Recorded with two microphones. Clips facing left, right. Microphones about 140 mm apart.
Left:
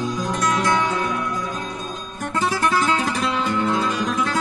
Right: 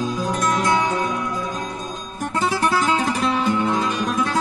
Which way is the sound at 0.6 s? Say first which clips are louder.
Right 1 dB; 20° right (ahead or behind).